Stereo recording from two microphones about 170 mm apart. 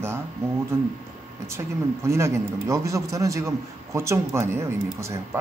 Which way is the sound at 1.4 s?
15° right (ahead or behind).